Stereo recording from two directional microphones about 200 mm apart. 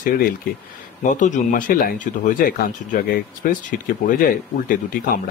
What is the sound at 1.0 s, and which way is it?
Speech, 40° left (ahead or behind).